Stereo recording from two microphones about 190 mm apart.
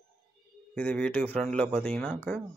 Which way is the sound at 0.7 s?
5° left (ahead or behind).